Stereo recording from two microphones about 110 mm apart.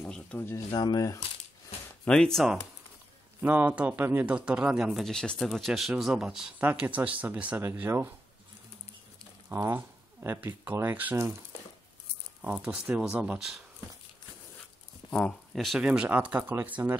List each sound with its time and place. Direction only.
0.0 s a sound: 5° left (ahead or behind)
0.7 s speech: 40° left (ahead or behind)
2.0 s speech: 5° left (ahead or behind)
3.3 s speech: 15° right (ahead or behind)
9.5 s speech: 20° right (ahead or behind)
12.4 s speech: 10° right (ahead or behind)
15.0 s speech: 5° left (ahead or behind); by 16.9 s 15° right (ahead or behind)